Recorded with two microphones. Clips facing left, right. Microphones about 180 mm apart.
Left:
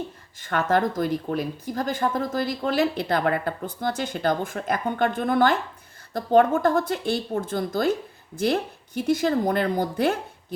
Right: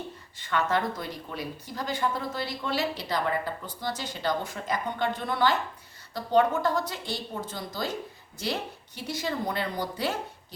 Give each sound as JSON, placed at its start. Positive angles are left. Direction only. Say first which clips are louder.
{"t": 0.3, "sound": "speech", "louder": "left 5 dB", "side_deg": 50}
{"t": 9.0, "sound": "speech", "louder": "left 10 dB", "side_deg": 50}